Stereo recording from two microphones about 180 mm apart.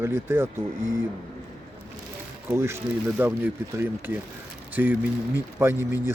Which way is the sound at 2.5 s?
15° right (ahead or behind).